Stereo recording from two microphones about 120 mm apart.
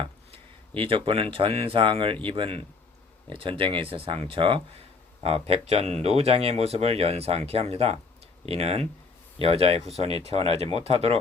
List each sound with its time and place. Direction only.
0.8 s speech: 50° right (ahead or behind)
5.2 s speech: 60° right (ahead or behind)